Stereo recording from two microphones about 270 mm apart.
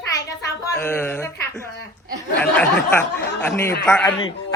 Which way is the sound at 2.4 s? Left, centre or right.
Centre.